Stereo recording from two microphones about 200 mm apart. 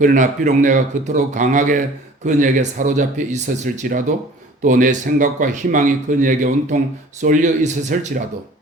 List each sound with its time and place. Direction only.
0.0 s speech: 40° right (ahead or behind)